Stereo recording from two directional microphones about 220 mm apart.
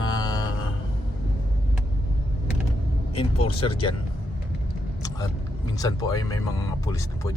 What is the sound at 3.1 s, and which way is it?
Speech, 25° left (ahead or behind).